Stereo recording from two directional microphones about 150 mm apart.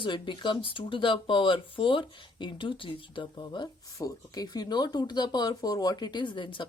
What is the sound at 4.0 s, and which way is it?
Speech, 25° left (ahead or behind).